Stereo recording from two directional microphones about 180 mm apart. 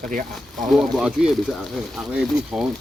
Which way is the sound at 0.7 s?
5° right (ahead or behind).